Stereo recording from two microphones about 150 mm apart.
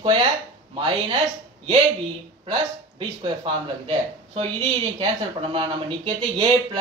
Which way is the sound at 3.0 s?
35° right (ahead or behind).